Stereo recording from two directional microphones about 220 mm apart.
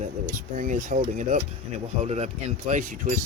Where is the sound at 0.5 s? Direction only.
35° right (ahead or behind).